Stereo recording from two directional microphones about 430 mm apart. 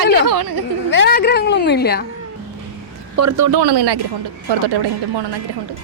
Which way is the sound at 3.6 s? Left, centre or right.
Right.